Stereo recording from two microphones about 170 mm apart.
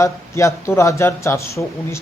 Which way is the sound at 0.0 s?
15° left (ahead or behind).